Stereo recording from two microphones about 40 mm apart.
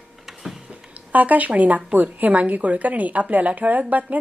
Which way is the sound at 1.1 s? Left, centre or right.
Right.